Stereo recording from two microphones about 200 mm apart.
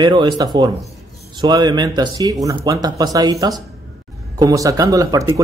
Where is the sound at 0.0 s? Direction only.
20° right (ahead or behind).